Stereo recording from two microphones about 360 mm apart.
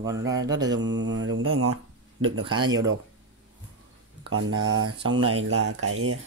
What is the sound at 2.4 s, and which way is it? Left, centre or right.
Mantra, centre.